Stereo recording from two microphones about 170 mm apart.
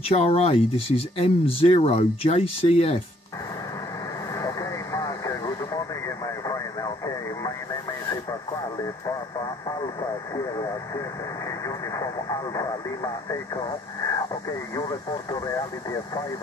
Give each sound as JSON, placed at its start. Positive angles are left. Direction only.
{"t": 0.1, "sound": "speech", "side_deg": 40}
{"t": 4.4, "sound": "vehicle", "side_deg": 20}
{"t": 11.6, "sound": "speech", "side_deg": 20}
{"t": 15.4, "sound": "speech", "side_deg": 20}